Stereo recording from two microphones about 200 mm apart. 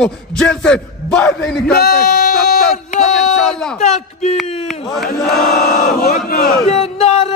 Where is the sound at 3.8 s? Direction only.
35° left (ahead or behind).